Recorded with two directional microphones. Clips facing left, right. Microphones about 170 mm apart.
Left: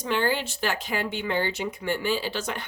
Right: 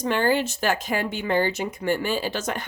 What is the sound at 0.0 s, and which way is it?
Speech, 45° right (ahead or behind).